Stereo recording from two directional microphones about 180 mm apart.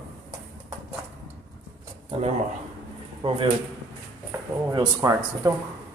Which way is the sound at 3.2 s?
25° right (ahead or behind).